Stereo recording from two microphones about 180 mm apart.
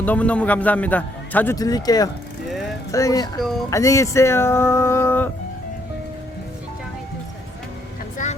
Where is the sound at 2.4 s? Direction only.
Centre (ahead or behind).